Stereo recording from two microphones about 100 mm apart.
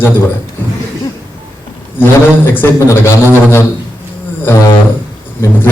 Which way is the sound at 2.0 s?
20° left (ahead or behind).